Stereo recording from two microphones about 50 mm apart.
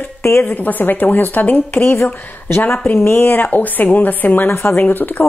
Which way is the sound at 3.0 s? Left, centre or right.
Left.